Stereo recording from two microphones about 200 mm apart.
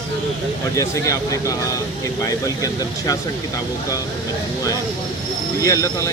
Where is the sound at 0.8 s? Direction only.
15° left (ahead or behind).